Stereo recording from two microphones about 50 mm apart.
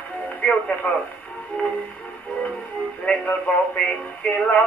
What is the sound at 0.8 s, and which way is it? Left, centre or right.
Speech, left.